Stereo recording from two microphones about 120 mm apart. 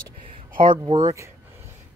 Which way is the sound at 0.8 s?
35° right (ahead or behind).